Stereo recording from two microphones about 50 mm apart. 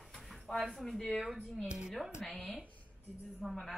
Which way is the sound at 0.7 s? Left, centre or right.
Centre.